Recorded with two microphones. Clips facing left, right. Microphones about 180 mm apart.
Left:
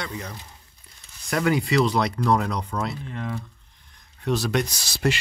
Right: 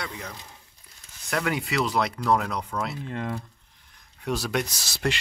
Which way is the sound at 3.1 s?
50° right (ahead or behind).